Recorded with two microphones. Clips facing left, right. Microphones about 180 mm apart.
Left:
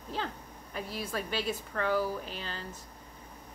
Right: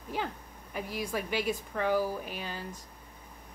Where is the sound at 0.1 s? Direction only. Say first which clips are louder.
Right 2 dB; 10° right (ahead or behind).